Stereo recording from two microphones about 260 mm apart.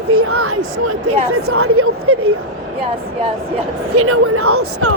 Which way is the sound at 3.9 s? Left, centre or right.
Right.